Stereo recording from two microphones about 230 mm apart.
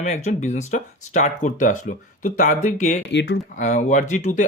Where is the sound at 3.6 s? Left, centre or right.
Left.